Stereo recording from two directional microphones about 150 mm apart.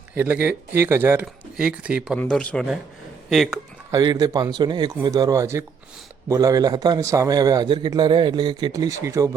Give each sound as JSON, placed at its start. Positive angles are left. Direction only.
{"t": 0.1, "sound": "speech", "side_deg": -10}
{"t": 2.1, "sound": "speech", "side_deg": 5}
{"t": 3.9, "sound": "a man's voice", "side_deg": -25}